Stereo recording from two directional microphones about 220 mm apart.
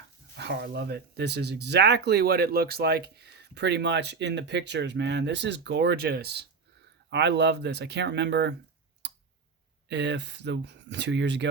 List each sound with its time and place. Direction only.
0.3 s speech: 50° right (ahead or behind)
9.0 s clicking: 50° right (ahead or behind)
9.9 s speech: 55° right (ahead or behind)